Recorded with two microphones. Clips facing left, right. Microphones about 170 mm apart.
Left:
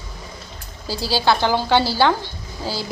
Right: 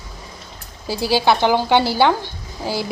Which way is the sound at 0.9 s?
20° right (ahead or behind).